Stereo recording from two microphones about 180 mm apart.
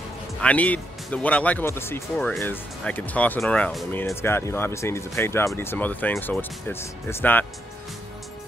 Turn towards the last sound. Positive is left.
turn(degrees=10)  # may be behind; listen again after turning